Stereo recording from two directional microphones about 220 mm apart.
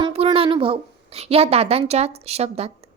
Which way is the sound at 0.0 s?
25° right (ahead or behind).